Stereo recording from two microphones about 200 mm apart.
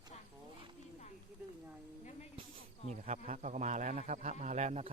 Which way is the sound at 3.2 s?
35° right (ahead or behind).